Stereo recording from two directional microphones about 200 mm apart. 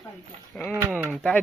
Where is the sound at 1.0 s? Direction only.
10° right (ahead or behind).